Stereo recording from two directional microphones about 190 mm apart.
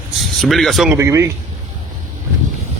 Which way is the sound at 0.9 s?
15° right (ahead or behind).